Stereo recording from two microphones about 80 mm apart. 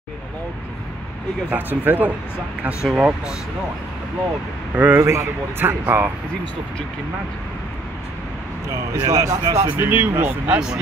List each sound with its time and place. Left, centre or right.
1.5 s speech: right
2.8 s speech: centre
4.7 s speech: right
5.0 s speech: right
9.0 s speech: right
9.8 s speech: right